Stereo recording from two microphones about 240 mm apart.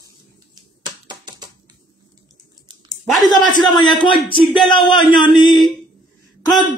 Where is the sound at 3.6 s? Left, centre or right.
Centre.